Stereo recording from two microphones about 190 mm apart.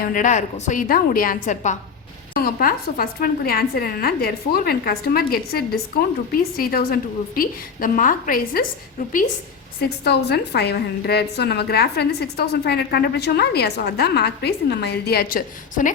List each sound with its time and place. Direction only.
0.0 s a woman's voice: 45° left (ahead or behind)
10.0 s a woman's voice: 60° left (ahead or behind)